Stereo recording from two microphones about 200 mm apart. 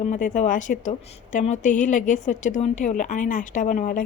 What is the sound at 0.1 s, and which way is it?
A woman's voice, 40° left (ahead or behind).